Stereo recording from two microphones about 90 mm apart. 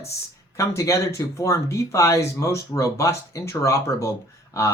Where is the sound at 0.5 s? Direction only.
35° left (ahead or behind).